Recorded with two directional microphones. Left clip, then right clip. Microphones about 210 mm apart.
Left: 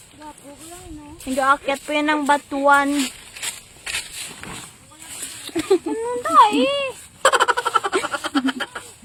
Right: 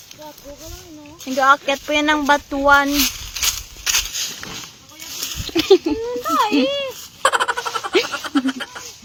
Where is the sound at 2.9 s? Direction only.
55° right (ahead or behind).